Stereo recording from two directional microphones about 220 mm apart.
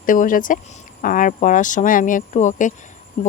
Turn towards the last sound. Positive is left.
turn(degrees=30)  # may be behind; listen again after turning